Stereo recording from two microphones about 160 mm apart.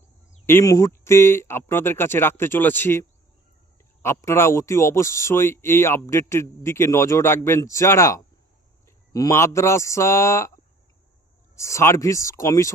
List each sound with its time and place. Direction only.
0.4 s a man's voice: 20° left (ahead or behind)
11.5 s speech: 20° left (ahead or behind)